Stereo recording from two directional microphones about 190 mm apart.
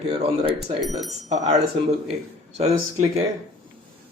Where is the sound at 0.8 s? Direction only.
Centre (ahead or behind).